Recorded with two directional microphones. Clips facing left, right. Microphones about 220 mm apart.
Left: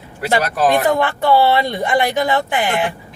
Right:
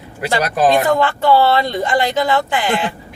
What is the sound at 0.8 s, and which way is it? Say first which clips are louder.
Speech: right 1 dB; 15° left (ahead or behind).